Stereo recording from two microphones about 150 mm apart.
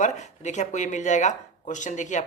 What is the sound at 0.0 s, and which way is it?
Speech, 55° left (ahead or behind).